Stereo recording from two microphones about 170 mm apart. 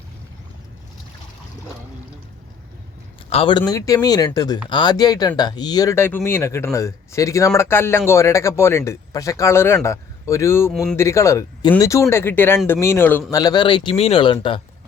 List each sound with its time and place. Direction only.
3.2 s a man's voice: 30° left (ahead or behind)
3.6 s speech: 20° left (ahead or behind)
10.7 s speech: centre (ahead or behind)
10.9 s speech: 15° left (ahead or behind); by 14.3 s 30° left (ahead or behind)